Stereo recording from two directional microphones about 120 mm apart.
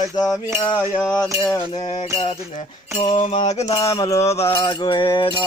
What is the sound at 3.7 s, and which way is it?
Mantra, 50° left (ahead or behind).